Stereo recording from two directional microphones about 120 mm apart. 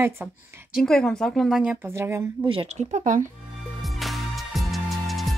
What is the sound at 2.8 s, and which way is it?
Speech, 80° right.